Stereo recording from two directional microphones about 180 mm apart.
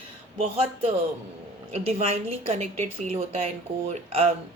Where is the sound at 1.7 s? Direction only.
35° right (ahead or behind).